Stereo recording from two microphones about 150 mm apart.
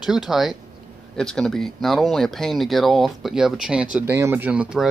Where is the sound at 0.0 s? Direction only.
5° right (ahead or behind).